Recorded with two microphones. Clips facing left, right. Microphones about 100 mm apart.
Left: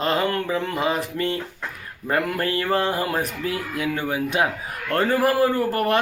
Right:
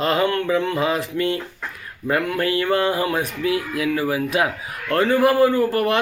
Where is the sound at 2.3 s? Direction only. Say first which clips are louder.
Right 3 dB; 35° left (ahead or behind).